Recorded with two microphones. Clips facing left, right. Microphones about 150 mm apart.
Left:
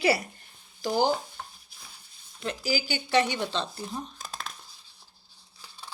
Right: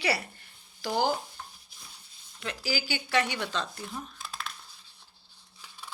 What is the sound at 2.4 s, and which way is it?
Speech, 35° left (ahead or behind).